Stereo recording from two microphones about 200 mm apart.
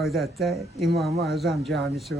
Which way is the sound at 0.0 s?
Centre (ahead or behind).